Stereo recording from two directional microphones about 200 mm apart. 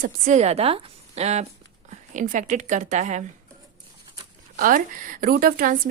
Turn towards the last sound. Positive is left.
turn(degrees=-45)  # may be behind; listen again after turning